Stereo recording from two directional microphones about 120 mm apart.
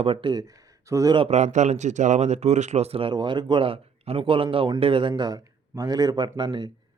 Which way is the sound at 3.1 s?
40° right (ahead or behind).